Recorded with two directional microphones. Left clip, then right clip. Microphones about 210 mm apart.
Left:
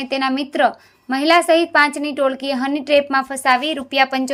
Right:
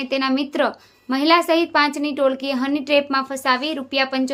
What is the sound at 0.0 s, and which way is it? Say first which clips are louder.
A woman's voice: left 1 dB; 15° left (ahead or behind).